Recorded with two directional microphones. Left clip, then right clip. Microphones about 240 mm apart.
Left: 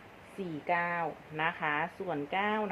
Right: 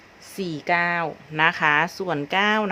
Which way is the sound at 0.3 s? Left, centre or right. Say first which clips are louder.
Right 9 dB; right.